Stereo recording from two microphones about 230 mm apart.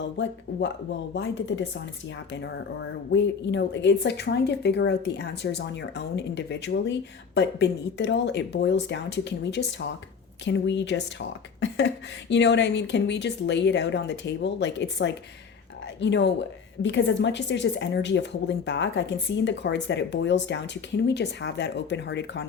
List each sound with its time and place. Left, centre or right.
0.0 s a woman's voice: left
3.1 s a woman's voice: left